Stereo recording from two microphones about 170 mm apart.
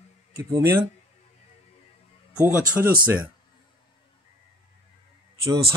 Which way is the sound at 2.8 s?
10° right (ahead or behind).